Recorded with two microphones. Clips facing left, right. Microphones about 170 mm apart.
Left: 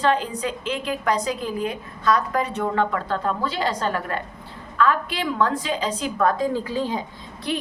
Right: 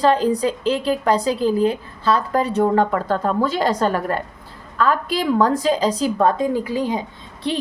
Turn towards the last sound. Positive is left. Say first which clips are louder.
# right 3 dB
turn(degrees=-25)  # may be behind; listen again after turning